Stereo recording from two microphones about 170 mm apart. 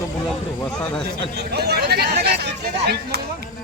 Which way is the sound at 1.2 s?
75° right (ahead or behind).